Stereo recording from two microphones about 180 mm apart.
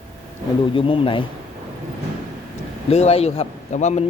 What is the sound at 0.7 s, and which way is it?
Speech, 30° left (ahead or behind).